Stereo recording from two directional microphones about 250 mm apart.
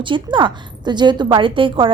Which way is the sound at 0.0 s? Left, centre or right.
Centre.